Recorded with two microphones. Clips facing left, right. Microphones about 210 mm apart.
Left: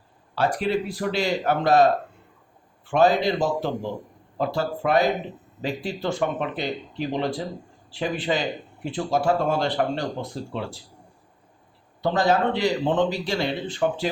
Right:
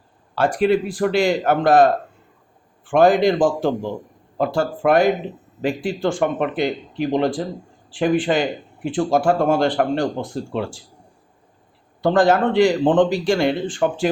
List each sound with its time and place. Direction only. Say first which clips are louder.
0.3 s a man's voice: right 6 dB; 50° right (ahead or behind)
12.0 s speech: right 5 dB; 50° right (ahead or behind)